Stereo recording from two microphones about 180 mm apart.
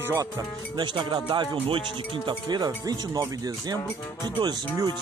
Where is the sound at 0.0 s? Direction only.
15° right (ahead or behind).